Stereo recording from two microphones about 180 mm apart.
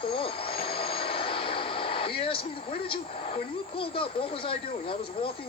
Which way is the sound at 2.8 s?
30° left (ahead or behind).